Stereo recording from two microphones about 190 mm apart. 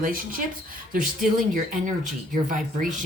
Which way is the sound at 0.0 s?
50° right (ahead or behind).